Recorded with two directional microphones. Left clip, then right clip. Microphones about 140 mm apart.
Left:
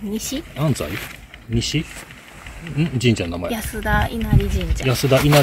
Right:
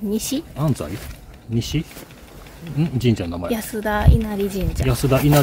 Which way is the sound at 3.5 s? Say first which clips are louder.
Right 1 dB; 90° right.